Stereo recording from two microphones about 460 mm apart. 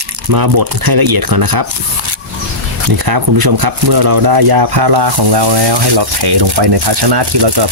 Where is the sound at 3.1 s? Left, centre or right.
Right.